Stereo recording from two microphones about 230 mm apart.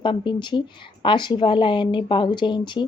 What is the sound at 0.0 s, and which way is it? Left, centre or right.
Speech, left.